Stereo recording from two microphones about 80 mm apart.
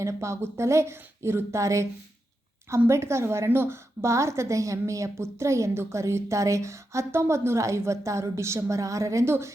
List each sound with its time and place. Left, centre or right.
0.0 s a woman's voice: right